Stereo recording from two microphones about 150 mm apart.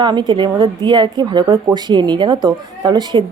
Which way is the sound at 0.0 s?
30° right (ahead or behind).